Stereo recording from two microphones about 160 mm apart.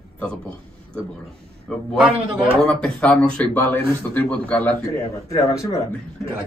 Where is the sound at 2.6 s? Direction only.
5° left (ahead or behind).